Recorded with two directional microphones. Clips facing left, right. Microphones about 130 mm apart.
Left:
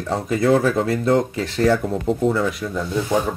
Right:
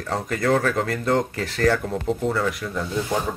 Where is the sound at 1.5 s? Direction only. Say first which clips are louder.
Left 3 dB; 10° left (ahead or behind).